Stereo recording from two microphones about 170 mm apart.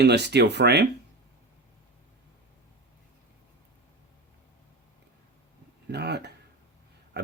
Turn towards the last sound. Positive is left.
turn(degrees=-75)  # may be behind; listen again after turning